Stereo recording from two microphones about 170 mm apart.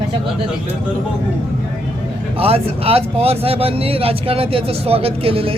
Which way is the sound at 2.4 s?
35° right (ahead or behind).